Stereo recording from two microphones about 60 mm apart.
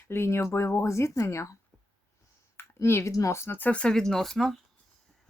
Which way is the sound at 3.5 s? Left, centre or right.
Left.